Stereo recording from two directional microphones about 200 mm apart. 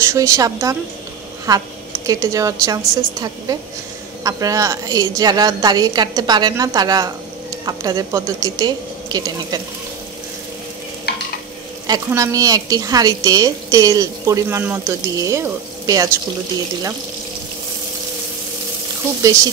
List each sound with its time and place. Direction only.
0.0 s a woman's voice: 15° right (ahead or behind)
11.9 s speech: 15° right (ahead or behind)